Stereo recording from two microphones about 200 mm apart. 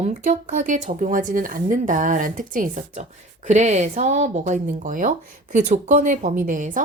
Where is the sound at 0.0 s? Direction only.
40° right (ahead or behind).